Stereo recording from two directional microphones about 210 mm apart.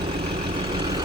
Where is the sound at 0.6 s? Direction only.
20° right (ahead or behind).